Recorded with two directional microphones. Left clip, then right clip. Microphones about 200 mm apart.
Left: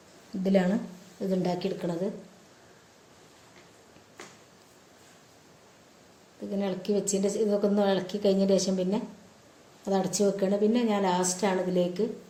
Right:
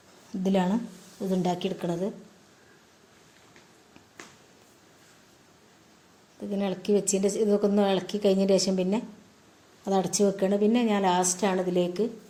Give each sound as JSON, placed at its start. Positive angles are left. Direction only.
{"t": 0.4, "sound": "speech", "side_deg": -30}
{"t": 6.5, "sound": "speech", "side_deg": -40}